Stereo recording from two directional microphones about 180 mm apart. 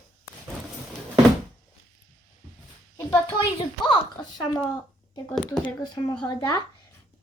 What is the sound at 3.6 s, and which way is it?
Speech, 25° left (ahead or behind).